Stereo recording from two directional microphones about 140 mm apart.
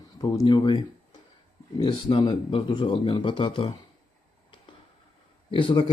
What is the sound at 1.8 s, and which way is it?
Speech, 35° left (ahead or behind).